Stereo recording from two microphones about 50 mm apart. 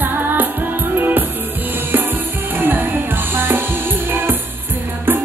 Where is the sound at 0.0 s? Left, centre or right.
Right.